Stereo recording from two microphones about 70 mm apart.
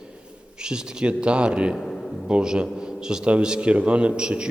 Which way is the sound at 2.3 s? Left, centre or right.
Centre.